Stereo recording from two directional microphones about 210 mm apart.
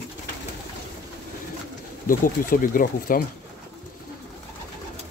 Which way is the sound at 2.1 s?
40° left (ahead or behind).